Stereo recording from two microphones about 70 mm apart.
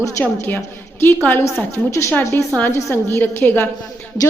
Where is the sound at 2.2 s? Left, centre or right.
Left.